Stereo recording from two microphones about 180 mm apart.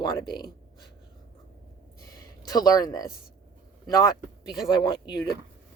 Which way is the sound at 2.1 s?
20° left (ahead or behind).